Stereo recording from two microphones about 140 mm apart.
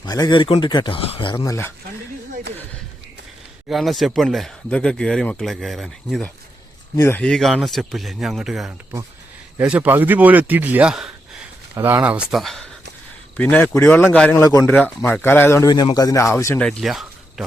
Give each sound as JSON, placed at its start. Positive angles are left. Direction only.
{"t": 0.0, "sound": "speech", "side_deg": 30}
{"t": 1.5, "sound": "speech", "side_deg": 20}
{"t": 3.7, "sound": "speech", "side_deg": 0}
{"t": 6.9, "sound": "speech", "side_deg": 20}
{"t": 7.2, "sound": "a man's voice", "side_deg": 5}
{"t": 15.7, "sound": "speech", "side_deg": 30}
{"t": 16.6, "sound": "speech", "side_deg": 5}